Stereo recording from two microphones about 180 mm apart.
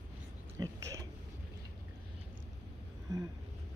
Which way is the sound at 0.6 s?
20° right (ahead or behind).